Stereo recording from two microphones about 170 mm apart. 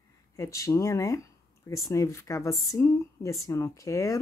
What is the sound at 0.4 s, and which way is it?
A woman's voice, 20° left (ahead or behind).